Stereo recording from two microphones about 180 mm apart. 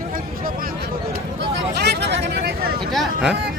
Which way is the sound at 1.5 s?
65° right (ahead or behind).